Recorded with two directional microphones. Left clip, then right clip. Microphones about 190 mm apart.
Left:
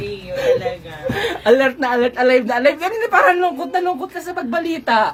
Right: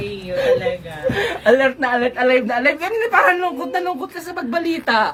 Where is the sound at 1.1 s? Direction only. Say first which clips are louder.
Left 1 dB; 60° left (ahead or behind); by 5.1 s 15° left (ahead or behind).